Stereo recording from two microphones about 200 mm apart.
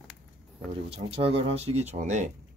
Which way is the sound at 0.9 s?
30° right (ahead or behind).